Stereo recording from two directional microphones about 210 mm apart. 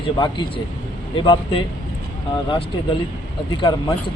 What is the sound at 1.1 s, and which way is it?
Speech, 25° left (ahead or behind).